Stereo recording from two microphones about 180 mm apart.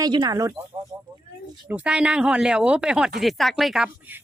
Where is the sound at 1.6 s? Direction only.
5° right (ahead or behind).